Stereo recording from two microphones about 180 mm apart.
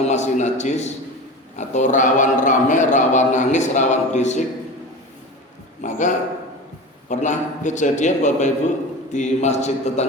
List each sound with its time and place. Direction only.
0.0 s a man's voice: 40° left (ahead or behind)
5.8 s a man's voice: 45° left (ahead or behind)